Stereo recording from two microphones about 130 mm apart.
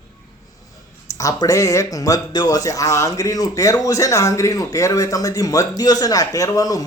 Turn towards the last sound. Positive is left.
turn(degrees=30)  # may be behind; listen again after turning